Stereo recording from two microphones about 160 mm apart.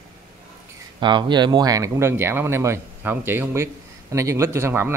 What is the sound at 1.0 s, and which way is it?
Speech, 30° right (ahead or behind).